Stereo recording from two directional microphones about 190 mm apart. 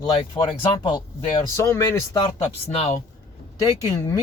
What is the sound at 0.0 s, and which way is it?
Speech, 25° left (ahead or behind).